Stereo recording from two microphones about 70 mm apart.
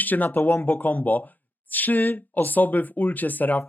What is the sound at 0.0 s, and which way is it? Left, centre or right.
Speech, left.